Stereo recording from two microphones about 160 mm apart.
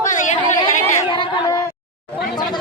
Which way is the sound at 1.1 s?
25° left (ahead or behind).